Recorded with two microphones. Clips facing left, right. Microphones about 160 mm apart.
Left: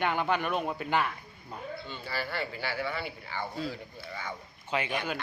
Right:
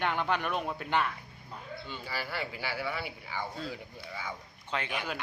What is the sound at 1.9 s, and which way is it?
Speech, 10° right (ahead or behind).